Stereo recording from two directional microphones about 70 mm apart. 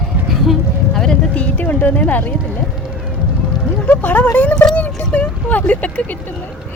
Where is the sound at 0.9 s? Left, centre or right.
Centre; by 2.4 s left.